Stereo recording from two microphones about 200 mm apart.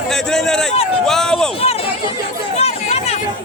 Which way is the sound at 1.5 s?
30° left (ahead or behind).